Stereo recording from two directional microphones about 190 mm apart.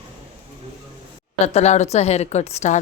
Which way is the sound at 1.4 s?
35° left (ahead or behind).